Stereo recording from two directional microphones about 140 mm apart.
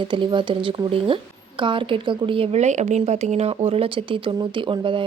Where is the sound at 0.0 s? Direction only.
35° right (ahead or behind).